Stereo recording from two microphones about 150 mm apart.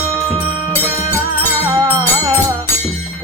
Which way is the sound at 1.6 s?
20° right (ahead or behind).